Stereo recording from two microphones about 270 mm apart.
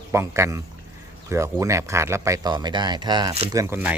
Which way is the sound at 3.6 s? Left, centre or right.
Centre.